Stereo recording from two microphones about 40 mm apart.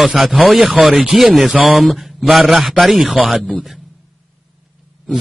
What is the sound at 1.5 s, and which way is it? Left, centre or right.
A man's voice, right.